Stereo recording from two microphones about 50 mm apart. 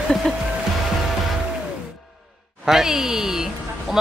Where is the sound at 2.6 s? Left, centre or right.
Centre.